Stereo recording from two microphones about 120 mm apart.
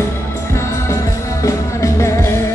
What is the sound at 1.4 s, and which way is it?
Music, 25° left (ahead or behind).